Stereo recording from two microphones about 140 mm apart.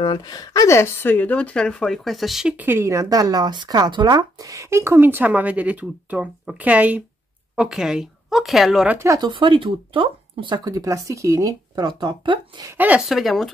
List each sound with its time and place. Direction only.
0.0 s a woman's voice: 35° left (ahead or behind); by 8.9 s 5° right (ahead or behind)
8.9 s speech: 20° right (ahead or behind)
12.7 s a woman's voice: 10° right (ahead or behind)